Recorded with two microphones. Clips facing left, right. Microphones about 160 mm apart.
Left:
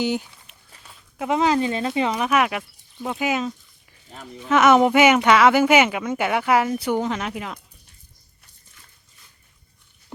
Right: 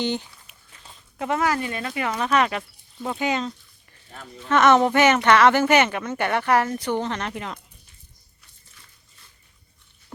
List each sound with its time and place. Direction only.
0.0 s speech: 5° left (ahead or behind)
1.3 s speech: 20° left (ahead or behind)
4.1 s speech: 15° left (ahead or behind)